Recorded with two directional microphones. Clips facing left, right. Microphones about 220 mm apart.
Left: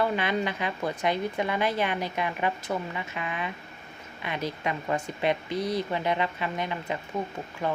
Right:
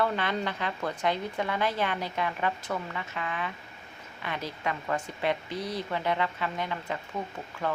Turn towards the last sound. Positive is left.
turn(degrees=15)  # may be behind; listen again after turning